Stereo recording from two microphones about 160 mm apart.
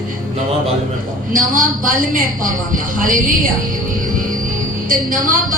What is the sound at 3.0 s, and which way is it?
Speech, 55° right (ahead or behind).